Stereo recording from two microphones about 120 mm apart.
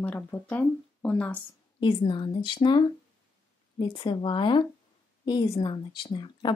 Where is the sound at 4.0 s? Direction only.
45° left (ahead or behind).